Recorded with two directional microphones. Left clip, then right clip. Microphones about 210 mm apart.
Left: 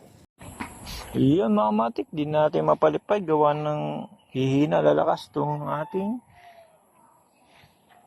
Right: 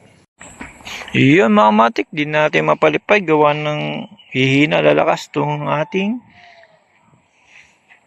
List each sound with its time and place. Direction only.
1.4 s speech: 55° right (ahead or behind)
2.0 s speech: centre (ahead or behind)
2.3 s speech: 30° right (ahead or behind)
2.6 s a man's voice: 15° right (ahead or behind)
4.8 s speech: 30° right (ahead or behind)